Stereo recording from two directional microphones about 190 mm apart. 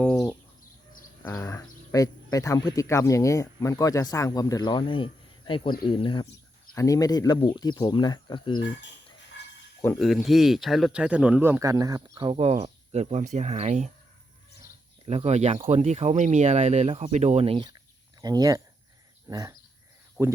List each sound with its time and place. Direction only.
0.0 s bird: 10° left (ahead or behind)
1.3 s speech: 15° left (ahead or behind)
8.5 s speech: 70° left (ahead or behind)
9.4 s a sound: 65° left (ahead or behind)
10.2 s speech: centre (ahead or behind); by 13.9 s 35° right (ahead or behind)
15.0 s speech: 35° right (ahead or behind)
18.2 s speech: 20° right (ahead or behind)
19.3 s a sound: 20° right (ahead or behind)
20.2 s speech: 10° right (ahead or behind)